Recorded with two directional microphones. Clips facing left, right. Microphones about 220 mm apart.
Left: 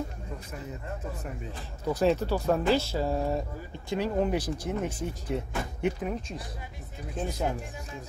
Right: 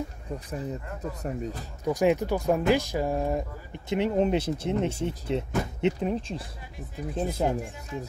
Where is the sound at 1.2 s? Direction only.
40° right (ahead or behind).